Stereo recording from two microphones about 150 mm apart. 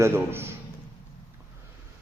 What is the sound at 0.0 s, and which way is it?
Speech, 15° right (ahead or behind).